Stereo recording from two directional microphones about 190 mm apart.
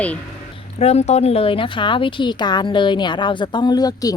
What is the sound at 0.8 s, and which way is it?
Speech, 35° left (ahead or behind).